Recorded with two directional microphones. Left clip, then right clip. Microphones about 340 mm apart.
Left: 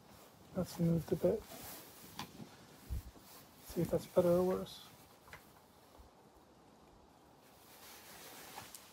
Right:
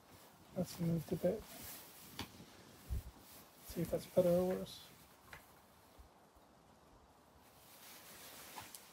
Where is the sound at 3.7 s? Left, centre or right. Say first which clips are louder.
Left 3 dB; centre.